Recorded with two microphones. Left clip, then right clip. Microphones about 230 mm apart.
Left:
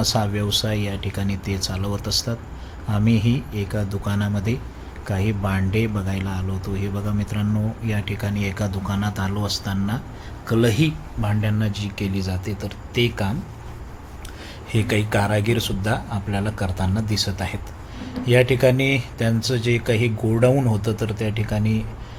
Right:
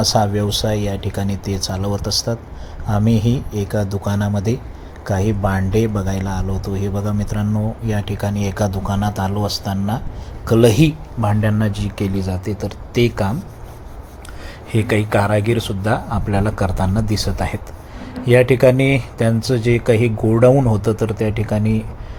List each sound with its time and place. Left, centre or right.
0.0 s speech: centre
14.7 s speech: centre
16.0 s speech: centre